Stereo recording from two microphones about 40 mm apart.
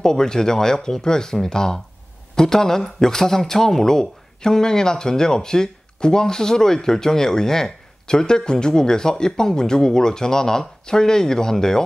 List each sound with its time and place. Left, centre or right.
0.0 s speech: centre